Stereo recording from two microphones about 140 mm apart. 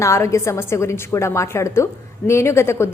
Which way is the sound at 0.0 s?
20° left (ahead or behind).